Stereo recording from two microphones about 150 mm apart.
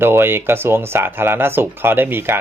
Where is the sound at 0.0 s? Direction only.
15° right (ahead or behind).